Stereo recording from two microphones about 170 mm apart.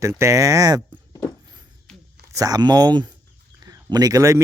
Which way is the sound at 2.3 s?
20° right (ahead or behind).